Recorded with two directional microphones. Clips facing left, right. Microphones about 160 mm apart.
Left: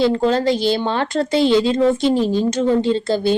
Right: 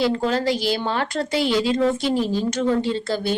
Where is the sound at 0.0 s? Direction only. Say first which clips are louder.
Left 5 dB; 25° left (ahead or behind).